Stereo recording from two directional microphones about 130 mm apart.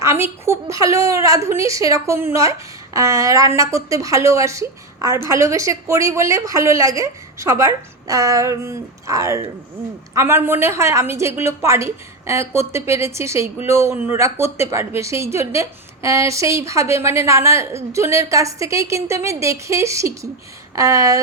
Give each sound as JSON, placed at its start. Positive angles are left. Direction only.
{"t": 0.0, "sound": "a woman's voice", "side_deg": -20}